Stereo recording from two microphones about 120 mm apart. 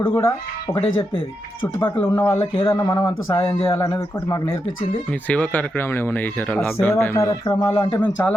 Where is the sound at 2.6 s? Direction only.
25° left (ahead or behind).